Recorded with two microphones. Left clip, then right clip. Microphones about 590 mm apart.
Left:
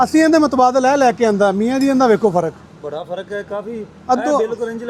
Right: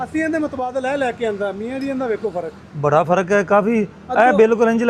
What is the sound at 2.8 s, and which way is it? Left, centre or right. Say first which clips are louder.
A man's voice: right 10 dB; right.